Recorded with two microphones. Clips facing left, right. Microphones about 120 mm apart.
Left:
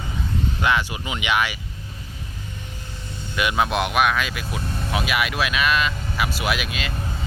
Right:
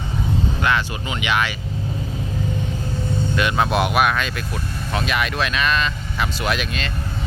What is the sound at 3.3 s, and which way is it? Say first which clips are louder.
Speech: right 1 dB; 10° left (ahead or behind).